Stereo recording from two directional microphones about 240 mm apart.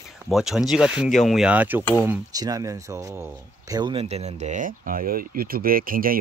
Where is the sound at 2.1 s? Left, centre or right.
Centre.